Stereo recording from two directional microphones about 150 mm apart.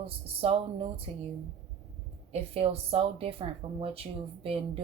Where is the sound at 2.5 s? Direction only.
40° right (ahead or behind).